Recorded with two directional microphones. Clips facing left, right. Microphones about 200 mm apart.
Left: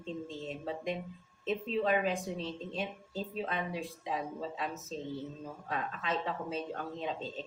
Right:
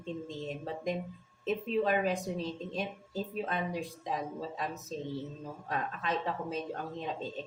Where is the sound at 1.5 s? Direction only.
40° right (ahead or behind).